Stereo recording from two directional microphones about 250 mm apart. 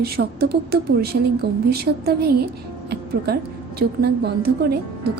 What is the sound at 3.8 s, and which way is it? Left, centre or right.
Speech, right.